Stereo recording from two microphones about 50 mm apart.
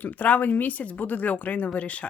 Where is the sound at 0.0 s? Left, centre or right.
Left.